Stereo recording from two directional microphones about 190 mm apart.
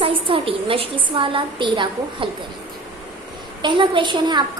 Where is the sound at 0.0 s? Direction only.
25° right (ahead or behind).